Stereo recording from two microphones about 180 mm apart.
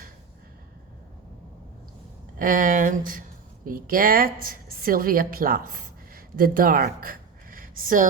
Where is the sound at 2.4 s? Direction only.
50° right (ahead or behind).